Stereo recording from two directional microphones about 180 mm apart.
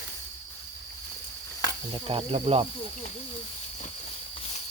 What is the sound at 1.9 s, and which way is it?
Speech, 30° right (ahead or behind).